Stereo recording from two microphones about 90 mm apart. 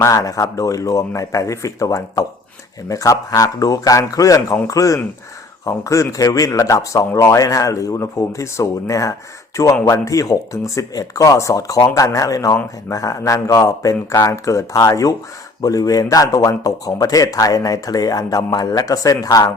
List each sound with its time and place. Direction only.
0.0 s speech: 40° left (ahead or behind)